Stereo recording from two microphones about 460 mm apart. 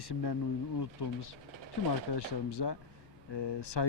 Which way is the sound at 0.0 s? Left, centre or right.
Left.